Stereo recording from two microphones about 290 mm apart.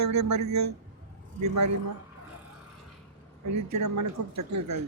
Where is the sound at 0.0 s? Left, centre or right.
Right.